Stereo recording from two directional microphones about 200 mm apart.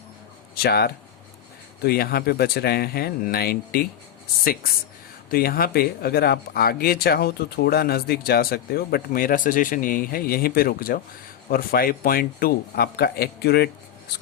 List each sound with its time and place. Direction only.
0.5 s speech: 50° left (ahead or behind)
5.3 s speech: 50° left (ahead or behind)